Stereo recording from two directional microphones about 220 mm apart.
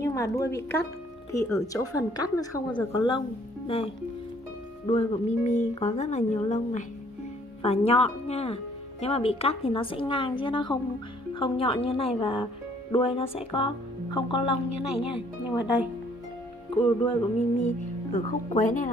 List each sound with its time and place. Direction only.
0.0 s a woman's voice: 15° left (ahead or behind)
17.6 s speech: 30° left (ahead or behind)